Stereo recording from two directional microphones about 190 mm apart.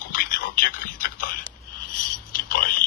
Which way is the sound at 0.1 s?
50° left (ahead or behind).